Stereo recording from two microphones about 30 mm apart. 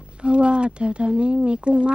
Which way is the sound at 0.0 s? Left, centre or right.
Right.